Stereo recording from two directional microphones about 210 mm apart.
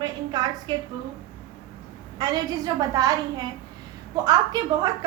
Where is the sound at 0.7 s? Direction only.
20° right (ahead or behind).